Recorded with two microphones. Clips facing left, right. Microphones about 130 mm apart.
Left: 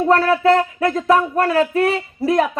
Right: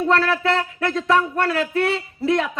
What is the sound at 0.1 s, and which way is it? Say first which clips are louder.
Music: left 6 dB; 30° left (ahead or behind).